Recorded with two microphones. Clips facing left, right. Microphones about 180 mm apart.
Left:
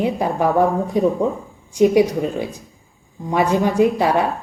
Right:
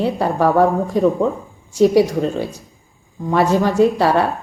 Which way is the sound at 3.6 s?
15° left (ahead or behind).